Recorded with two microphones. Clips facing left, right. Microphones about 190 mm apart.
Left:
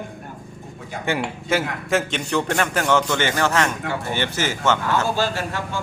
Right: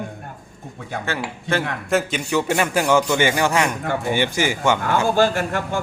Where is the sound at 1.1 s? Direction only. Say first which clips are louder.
Left 4 dB; 15° left (ahead or behind).